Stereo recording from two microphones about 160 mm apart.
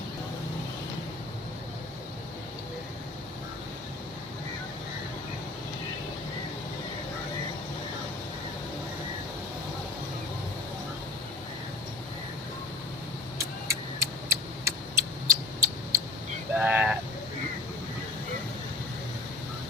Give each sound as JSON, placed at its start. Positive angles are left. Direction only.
{"t": 13.4, "sound": "vehicle", "side_deg": -20}